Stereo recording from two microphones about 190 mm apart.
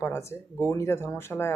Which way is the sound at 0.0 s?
15° left (ahead or behind).